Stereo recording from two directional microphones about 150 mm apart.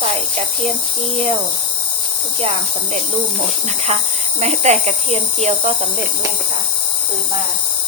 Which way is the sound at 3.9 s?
45° right (ahead or behind).